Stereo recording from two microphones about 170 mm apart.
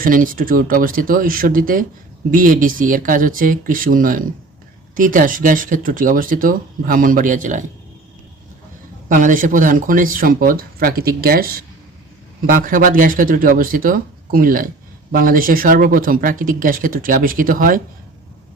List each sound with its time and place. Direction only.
0.0 s speech: 55° right (ahead or behind)
9.0 s speech: 55° right (ahead or behind)
12.6 s speech: 55° right (ahead or behind)